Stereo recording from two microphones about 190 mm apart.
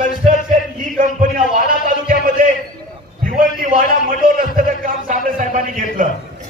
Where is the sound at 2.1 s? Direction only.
45° right (ahead or behind).